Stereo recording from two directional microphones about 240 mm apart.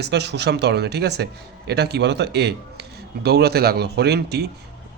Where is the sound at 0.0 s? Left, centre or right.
Right.